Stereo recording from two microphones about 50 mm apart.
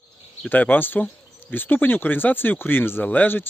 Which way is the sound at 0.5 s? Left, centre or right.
Left.